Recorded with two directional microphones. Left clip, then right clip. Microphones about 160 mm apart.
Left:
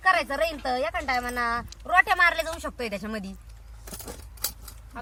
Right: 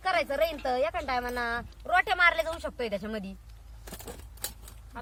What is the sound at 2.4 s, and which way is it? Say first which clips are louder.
Speech: left 1 dB; 15° right (ahead or behind).